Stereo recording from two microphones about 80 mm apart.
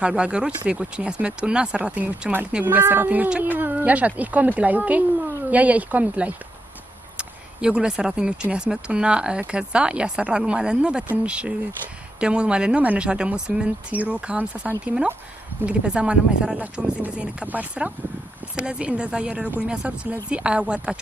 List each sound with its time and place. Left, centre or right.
0.0 s speech: centre